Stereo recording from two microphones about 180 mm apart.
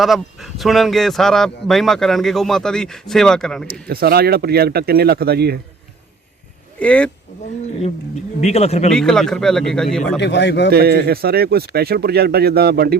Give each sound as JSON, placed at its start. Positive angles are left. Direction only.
{"t": 0.0, "sound": "speech", "side_deg": 0}
{"t": 3.7, "sound": "speech", "side_deg": -55}
{"t": 6.7, "sound": "speech", "side_deg": 5}
{"t": 8.4, "sound": "speech", "side_deg": 35}
{"t": 8.9, "sound": "speech", "side_deg": 5}
{"t": 10.2, "sound": "speech", "side_deg": 75}
{"t": 10.7, "sound": "speech", "side_deg": -60}